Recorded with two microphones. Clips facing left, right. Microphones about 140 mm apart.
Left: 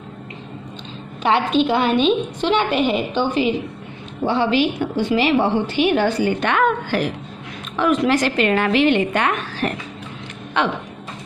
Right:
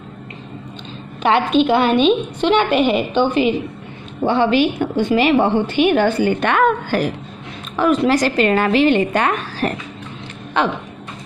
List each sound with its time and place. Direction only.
1.2 s a woman's voice: 60° right (ahead or behind); by 10.7 s 40° right (ahead or behind)